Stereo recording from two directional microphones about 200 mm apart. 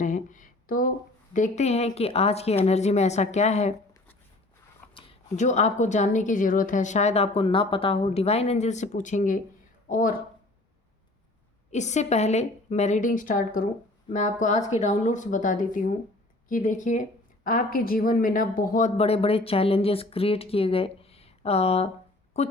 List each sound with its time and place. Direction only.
0.0 s a sound: 40° left (ahead or behind)
1.3 s speech: 35° left (ahead or behind)
4.9 s speech: 30° left (ahead or behind)
11.7 s speech: 35° left (ahead or behind)